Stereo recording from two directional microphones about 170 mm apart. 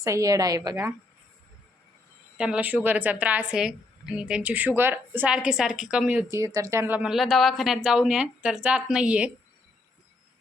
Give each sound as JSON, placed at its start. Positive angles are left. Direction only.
{"t": 0.0, "sound": "a woman's voice", "side_deg": -20}
{"t": 2.4, "sound": "a woman's voice", "side_deg": -5}
{"t": 6.3, "sound": "a woman's voice", "side_deg": -20}